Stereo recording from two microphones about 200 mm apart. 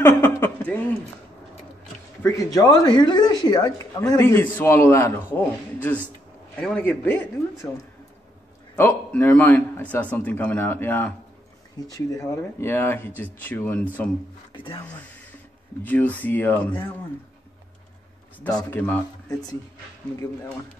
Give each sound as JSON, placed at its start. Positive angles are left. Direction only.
{"t": 0.0, "sound": "chuckle", "side_deg": 10}
{"t": 2.2, "sound": "speech", "side_deg": 15}
{"t": 8.7, "sound": "speech", "side_deg": 10}
{"t": 14.5, "sound": "speech", "side_deg": 25}
{"t": 15.8, "sound": "speech", "side_deg": 10}
{"t": 18.6, "sound": "speech", "side_deg": 10}